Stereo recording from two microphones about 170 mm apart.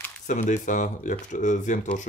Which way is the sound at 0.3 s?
45° left (ahead or behind).